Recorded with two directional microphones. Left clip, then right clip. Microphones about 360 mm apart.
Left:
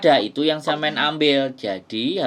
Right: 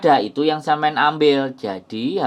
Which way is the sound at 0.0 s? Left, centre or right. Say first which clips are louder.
Right 1 dB; centre.